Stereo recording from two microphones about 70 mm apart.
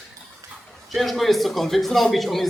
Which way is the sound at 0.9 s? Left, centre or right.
Centre.